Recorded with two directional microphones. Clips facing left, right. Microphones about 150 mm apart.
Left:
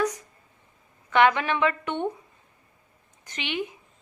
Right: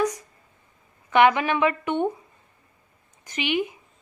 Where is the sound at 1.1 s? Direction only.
15° right (ahead or behind).